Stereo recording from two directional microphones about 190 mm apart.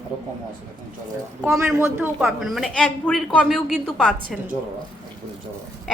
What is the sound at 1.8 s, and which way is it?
Speech, 10° right (ahead or behind).